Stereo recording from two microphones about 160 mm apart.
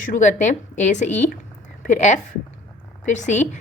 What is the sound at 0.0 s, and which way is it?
A woman's voice, 55° left (ahead or behind).